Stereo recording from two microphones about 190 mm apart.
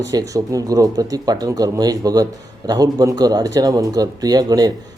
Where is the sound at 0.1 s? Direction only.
20° right (ahead or behind).